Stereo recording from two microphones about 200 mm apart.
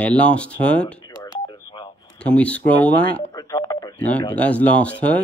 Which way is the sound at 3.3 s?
20° left (ahead or behind).